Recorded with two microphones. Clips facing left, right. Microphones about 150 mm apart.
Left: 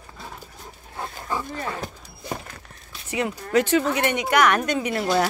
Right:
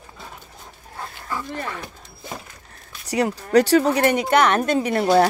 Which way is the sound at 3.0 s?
40° right (ahead or behind).